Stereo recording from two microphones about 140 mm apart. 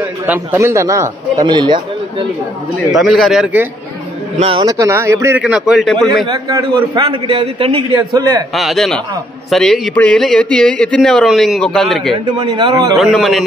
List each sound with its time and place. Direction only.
0.3 s speech: 15° right (ahead or behind)
1.4 s speech: 35° right (ahead or behind)
2.9 s speech: centre (ahead or behind)
4.4 s a man's voice: 40° right (ahead or behind)
4.6 s speech: 20° right (ahead or behind)
5.4 s speech: 5° right (ahead or behind)
6.2 s a man's voice: 30° right (ahead or behind)
8.0 s speech: 25° right (ahead or behind)
8.5 s speech: centre (ahead or behind)
12.4 s a man's voice: 35° right (ahead or behind)
12.9 s speech: centre (ahead or behind)